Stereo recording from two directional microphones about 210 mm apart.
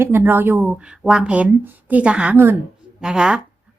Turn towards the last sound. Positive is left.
turn(degrees=-5)  # may be behind; listen again after turning